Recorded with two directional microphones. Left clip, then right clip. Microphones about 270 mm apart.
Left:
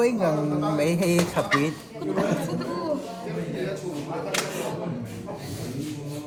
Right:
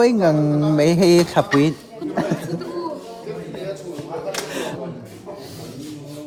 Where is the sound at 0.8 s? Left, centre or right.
Right.